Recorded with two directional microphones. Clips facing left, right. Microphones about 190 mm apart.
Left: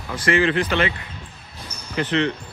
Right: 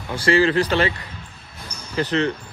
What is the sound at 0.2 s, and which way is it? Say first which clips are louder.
Speech: right 2 dB; 35° right (ahead or behind).